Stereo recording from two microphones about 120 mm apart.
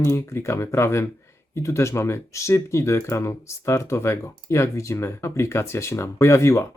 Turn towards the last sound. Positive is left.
turn(degrees=25)  # may be behind; listen again after turning